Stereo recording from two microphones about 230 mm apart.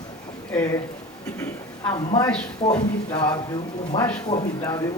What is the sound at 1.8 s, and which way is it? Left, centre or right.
Speech, centre.